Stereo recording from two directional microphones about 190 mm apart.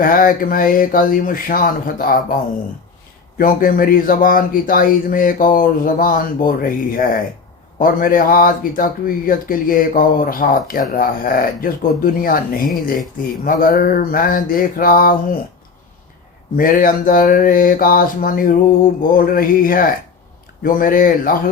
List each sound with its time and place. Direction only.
0.0 s speech: 45° left (ahead or behind)
3.3 s speech: 45° left (ahead or behind)
16.6 s speech: 45° left (ahead or behind)